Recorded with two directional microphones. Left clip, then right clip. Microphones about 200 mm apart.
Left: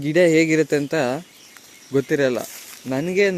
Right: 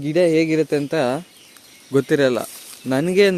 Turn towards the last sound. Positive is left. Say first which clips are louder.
# right 3 dB
turn(degrees=-30)  # may be behind; listen again after turning